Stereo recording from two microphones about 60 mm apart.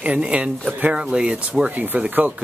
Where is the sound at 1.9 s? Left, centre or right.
Right.